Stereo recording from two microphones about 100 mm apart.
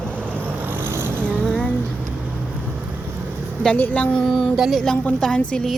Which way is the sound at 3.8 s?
15° left (ahead or behind).